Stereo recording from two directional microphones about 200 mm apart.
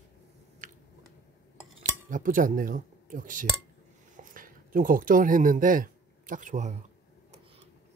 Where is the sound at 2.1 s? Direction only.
40° right (ahead or behind).